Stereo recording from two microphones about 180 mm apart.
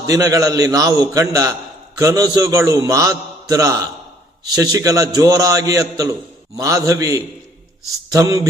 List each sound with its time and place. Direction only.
0.0 s a man's voice: 20° right (ahead or behind)